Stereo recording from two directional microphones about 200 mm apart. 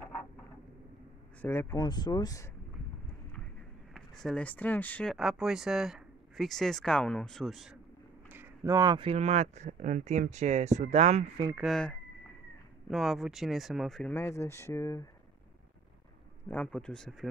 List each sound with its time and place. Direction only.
1.4 s speech: 10° left (ahead or behind)
3.9 s speech: centre (ahead or behind)
8.3 s speech: 10° right (ahead or behind); by 11.2 s 35° right (ahead or behind)
11.5 s speech: centre (ahead or behind)
16.4 s speech: 5° left (ahead or behind)